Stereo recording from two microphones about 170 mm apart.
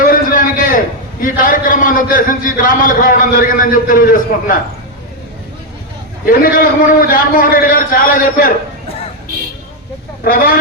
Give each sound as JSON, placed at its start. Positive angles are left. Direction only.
{"t": 0.0, "sound": "a sound", "side_deg": 55}
{"t": 1.2, "sound": "a man's voice", "side_deg": 50}
{"t": 6.2, "sound": "a man's voice", "side_deg": 55}
{"t": 10.2, "sound": "a man's voice", "side_deg": 60}